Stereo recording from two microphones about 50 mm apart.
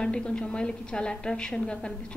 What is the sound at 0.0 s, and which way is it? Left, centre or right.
A woman's voice, centre.